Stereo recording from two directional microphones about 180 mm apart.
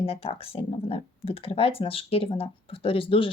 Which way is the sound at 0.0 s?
35° left (ahead or behind).